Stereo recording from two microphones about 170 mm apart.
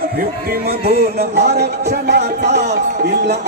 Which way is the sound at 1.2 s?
75° right (ahead or behind).